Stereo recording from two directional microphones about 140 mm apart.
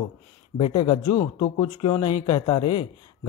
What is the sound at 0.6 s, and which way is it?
Speech, 40° left (ahead or behind).